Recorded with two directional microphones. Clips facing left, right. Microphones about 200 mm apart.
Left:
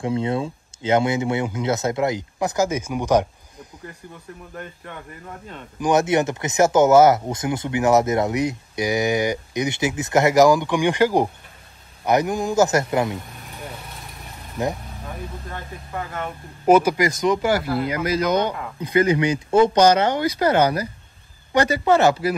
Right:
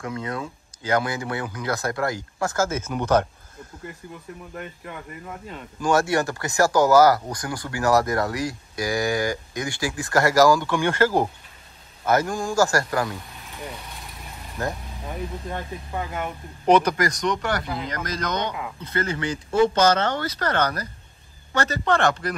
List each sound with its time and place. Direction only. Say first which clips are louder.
0.0 s speech: left 7 dB; 30° left (ahead or behind); by 3.3 s 10° left (ahead or behind)
5.8 s speech: left 3 dB; 20° left (ahead or behind)
13.5 s vehicle: right 3 dB; centre (ahead or behind)
16.6 s speech: left 3 dB; 5° left (ahead or behind)